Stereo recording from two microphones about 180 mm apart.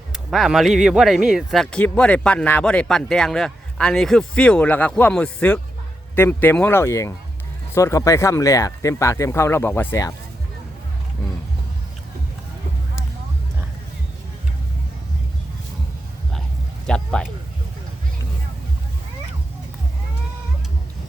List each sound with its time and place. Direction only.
0.1 s speech: centre (ahead or behind)
16.8 s speech: 5° left (ahead or behind)